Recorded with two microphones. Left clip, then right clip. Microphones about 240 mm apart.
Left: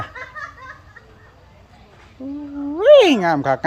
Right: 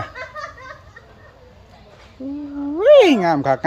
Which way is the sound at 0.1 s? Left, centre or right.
Right.